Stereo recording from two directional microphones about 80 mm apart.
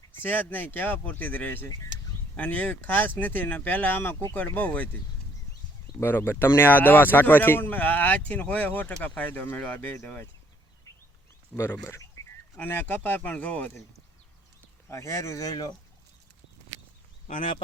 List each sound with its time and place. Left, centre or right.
0.2 s speech: left
6.0 s speech: left
10.9 s a sound: left
11.5 s speech: left
12.5 s speech: centre
14.8 s speech: left